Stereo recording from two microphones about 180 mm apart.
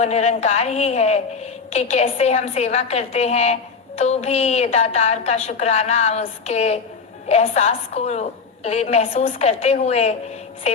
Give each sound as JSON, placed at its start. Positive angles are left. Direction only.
{"t": 0.0, "sound": "a woman's voice", "side_deg": 40}